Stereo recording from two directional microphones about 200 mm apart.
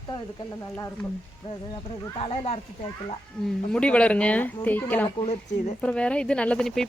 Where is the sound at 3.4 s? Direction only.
5° left (ahead or behind).